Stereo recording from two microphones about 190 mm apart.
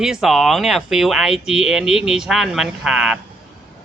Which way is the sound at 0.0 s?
Centre (ahead or behind).